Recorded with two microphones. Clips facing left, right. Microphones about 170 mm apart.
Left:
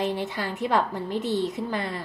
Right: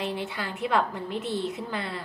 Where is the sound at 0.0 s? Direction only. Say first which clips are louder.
Left 4 dB; 40° left (ahead or behind).